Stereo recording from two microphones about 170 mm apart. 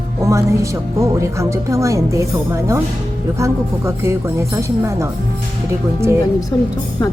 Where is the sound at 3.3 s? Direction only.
15° right (ahead or behind).